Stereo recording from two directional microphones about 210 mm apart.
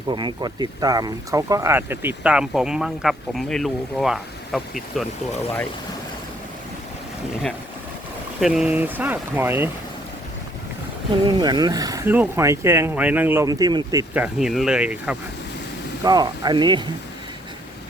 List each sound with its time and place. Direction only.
0.1 s speech: 20° right (ahead or behind); by 5.0 s centre (ahead or behind)
8.4 s speech: 5° right (ahead or behind)
11.3 s speech: 20° right (ahead or behind)
14.1 s speech: 5° right (ahead or behind)
16.0 s speech: 20° right (ahead or behind)